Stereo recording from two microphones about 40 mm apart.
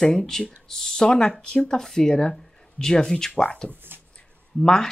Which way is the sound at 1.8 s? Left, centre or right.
Centre.